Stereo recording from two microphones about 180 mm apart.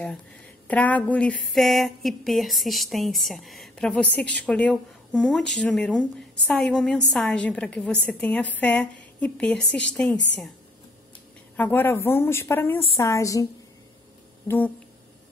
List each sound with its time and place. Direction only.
0.7 s a woman's voice: 10° left (ahead or behind)
11.5 s a woman's voice: 10° left (ahead or behind)